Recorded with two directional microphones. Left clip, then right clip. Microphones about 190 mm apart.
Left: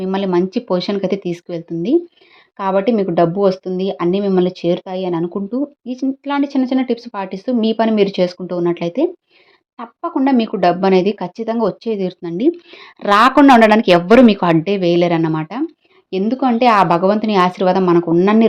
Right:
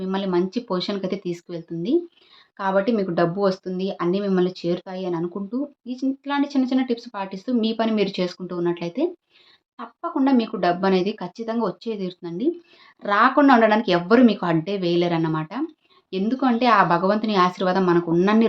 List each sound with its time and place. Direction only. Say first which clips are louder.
0.0 s speech: left 6 dB; 35° left (ahead or behind)